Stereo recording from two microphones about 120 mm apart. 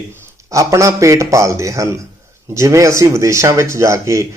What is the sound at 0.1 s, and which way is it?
Speech, 25° right (ahead or behind).